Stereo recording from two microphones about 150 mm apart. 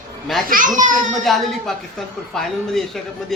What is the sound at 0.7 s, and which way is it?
Speech, 55° right (ahead or behind).